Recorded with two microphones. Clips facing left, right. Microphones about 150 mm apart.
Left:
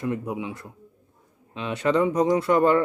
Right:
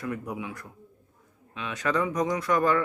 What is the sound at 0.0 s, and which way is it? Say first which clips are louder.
Speech: left 5 dB; 25° left (ahead or behind).